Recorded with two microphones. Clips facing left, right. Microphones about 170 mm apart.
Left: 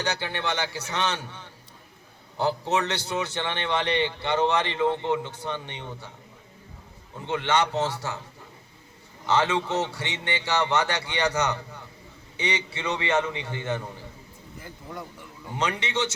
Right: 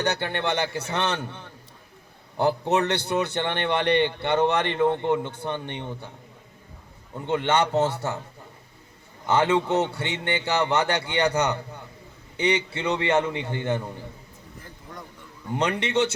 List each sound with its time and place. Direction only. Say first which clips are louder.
0.0 s a man's voice: right 3 dB; 55° right (ahead or behind)
7.3 s a man's voice: right 2 dB; 55° right (ahead or behind)
9.3 s a man's voice: right 3 dB; 55° right (ahead or behind)
15.5 s a man's voice: right 4 dB; 60° right (ahead or behind)